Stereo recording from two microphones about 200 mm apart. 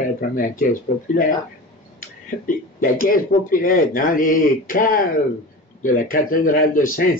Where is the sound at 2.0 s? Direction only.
40° left (ahead or behind).